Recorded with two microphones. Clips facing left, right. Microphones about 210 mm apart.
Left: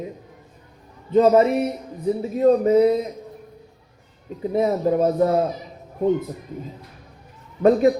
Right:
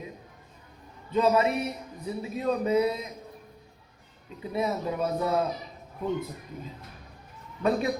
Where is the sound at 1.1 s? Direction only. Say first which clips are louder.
Left 8 dB; 45° left (ahead or behind).